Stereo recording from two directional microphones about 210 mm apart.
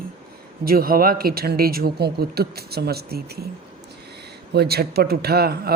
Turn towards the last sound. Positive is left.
turn(degrees=-50)  # may be behind; listen again after turning